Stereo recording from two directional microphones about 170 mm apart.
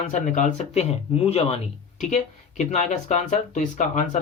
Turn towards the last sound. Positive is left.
turn(degrees=45)  # may be behind; listen again after turning